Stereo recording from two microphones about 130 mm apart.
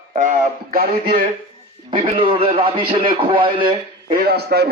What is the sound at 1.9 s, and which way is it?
A man's voice, 45° right (ahead or behind).